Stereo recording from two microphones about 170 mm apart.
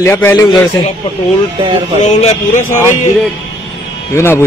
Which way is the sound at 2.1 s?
45° left (ahead or behind).